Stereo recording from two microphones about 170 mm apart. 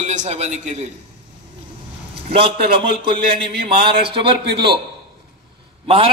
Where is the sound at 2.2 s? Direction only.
35° right (ahead or behind).